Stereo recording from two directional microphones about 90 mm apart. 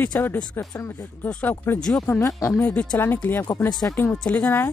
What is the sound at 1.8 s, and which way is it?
Speech, 10° left (ahead or behind).